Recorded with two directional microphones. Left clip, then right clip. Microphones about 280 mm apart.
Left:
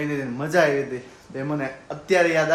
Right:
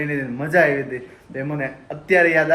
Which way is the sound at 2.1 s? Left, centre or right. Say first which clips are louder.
Right 4 dB; centre.